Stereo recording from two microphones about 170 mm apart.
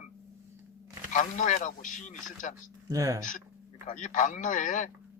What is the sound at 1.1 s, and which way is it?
Speech, 50° left (ahead or behind).